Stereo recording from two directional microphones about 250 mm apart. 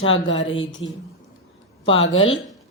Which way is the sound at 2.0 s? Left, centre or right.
Left.